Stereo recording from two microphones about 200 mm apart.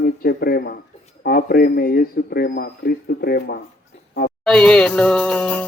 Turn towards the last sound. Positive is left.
turn(degrees=5)  # may be behind; listen again after turning